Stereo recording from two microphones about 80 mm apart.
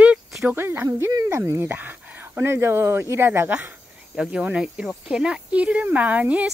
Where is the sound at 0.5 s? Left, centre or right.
Right.